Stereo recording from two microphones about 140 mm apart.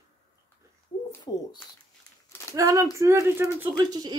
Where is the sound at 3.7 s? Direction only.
30° right (ahead or behind).